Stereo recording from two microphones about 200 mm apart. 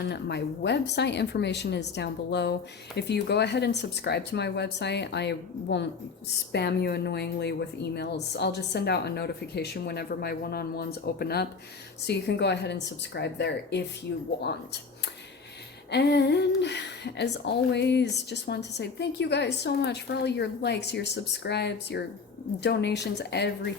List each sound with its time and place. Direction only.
0.0 s speech: 60° left (ahead or behind)
15.9 s speech: 55° left (ahead or behind)